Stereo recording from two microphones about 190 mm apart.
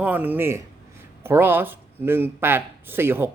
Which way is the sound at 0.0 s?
10° right (ahead or behind).